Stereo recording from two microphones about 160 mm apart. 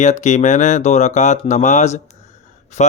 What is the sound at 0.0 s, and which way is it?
Speech, 50° left (ahead or behind).